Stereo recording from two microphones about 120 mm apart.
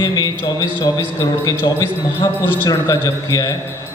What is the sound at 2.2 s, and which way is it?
A man's voice, 25° left (ahead or behind).